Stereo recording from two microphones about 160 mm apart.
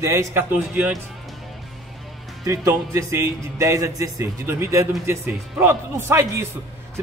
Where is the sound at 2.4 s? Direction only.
20° right (ahead or behind).